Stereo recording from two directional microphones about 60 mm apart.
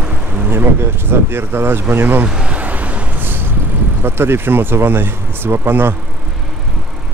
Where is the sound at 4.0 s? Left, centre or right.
Right.